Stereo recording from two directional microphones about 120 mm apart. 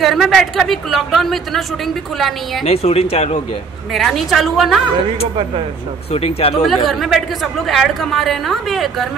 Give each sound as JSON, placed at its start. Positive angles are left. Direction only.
{"t": 0.0, "sound": "speech", "side_deg": 0}
{"t": 2.6, "sound": "speech", "side_deg": 55}
{"t": 3.9, "sound": "speech", "side_deg": 0}
{"t": 6.1, "sound": "speech", "side_deg": 55}
{"t": 6.6, "sound": "speech", "side_deg": 0}